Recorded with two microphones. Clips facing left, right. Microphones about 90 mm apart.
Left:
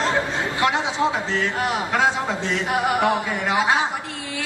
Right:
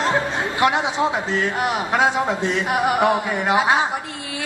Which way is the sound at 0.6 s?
15° right (ahead or behind).